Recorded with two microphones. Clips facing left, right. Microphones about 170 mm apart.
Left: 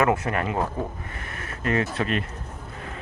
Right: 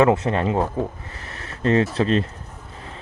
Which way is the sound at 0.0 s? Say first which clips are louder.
Right 5 dB; 25° right (ahead or behind).